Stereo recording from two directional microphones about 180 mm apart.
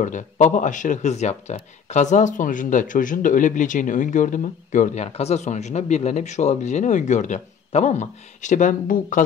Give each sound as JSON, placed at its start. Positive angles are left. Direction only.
{"t": 0.0, "sound": "speech", "side_deg": 45}